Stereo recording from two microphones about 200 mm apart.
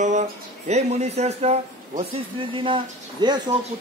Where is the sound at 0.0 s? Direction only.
35° right (ahead or behind).